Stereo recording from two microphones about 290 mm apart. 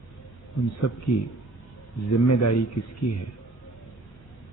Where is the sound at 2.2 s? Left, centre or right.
Left.